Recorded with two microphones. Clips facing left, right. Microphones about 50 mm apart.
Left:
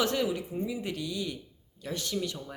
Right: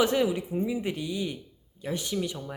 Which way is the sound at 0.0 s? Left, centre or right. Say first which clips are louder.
Right 4 dB; centre.